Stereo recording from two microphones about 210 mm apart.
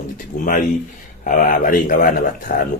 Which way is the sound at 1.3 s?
40° left (ahead or behind).